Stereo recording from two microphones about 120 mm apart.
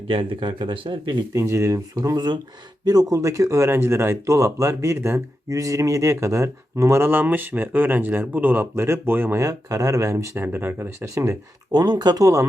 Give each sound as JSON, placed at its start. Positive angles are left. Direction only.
{"t": 0.1, "sound": "speech", "side_deg": -45}
{"t": 1.3, "sound": "speech", "side_deg": -25}